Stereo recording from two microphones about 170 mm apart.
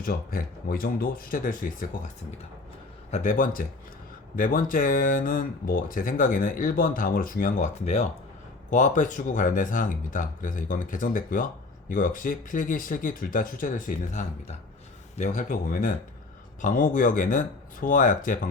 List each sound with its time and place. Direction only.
0.0 s speech: 55° left (ahead or behind)
3.1 s speech: 45° left (ahead or behind)